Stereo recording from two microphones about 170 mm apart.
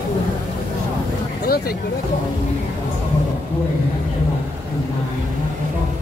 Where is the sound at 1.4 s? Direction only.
60° left (ahead or behind).